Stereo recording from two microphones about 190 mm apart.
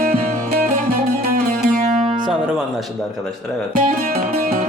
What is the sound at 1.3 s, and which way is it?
Music, 50° right (ahead or behind).